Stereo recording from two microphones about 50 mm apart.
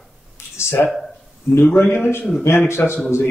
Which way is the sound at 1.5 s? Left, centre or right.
Left.